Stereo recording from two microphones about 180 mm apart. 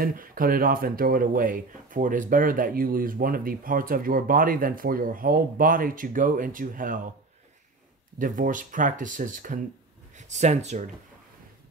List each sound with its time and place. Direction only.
0.0 s speech: 50° right (ahead or behind)
8.2 s speech: 45° right (ahead or behind)